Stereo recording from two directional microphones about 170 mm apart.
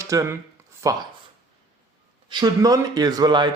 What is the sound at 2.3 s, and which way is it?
Speech, 20° right (ahead or behind).